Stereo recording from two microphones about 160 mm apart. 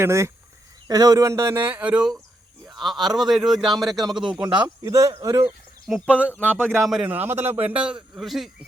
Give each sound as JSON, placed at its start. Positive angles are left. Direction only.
{"t": 0.0, "sound": "speech", "side_deg": -20}
{"t": 2.6, "sound": "a sound", "side_deg": 0}
{"t": 3.2, "sound": "speech", "side_deg": 0}
{"t": 4.8, "sound": "speech", "side_deg": -20}
{"t": 5.8, "sound": "speech", "side_deg": 5}
{"t": 7.1, "sound": "speech", "side_deg": -10}